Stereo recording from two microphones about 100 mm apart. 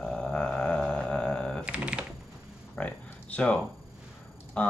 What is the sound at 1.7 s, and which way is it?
Speech, 10° right (ahead or behind).